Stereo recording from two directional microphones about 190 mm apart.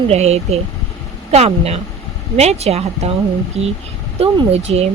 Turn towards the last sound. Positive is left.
turn(degrees=-35)  # may be behind; listen again after turning